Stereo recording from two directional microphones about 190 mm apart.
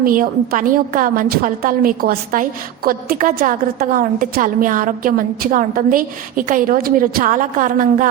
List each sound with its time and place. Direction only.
0.0 s a woman's voice: 45° right (ahead or behind)